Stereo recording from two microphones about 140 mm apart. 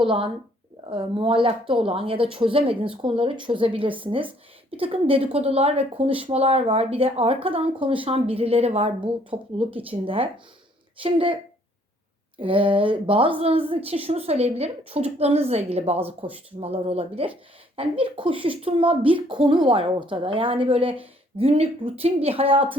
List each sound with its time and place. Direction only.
0.0 s speech: 40° right (ahead or behind)
12.4 s speech: 40° right (ahead or behind)